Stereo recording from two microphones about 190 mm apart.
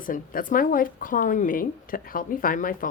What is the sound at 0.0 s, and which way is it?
A woman's voice, 45° left (ahead or behind).